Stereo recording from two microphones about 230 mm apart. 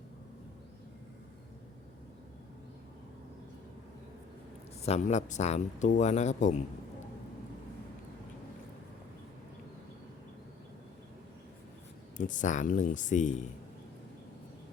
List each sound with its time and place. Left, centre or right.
4.8 s speech: left
12.1 s speech: left